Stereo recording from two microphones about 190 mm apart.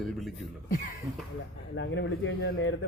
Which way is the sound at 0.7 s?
45° left (ahead or behind).